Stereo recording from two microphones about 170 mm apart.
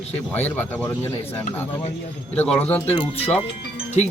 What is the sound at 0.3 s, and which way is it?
A man's voice, 10° left (ahead or behind).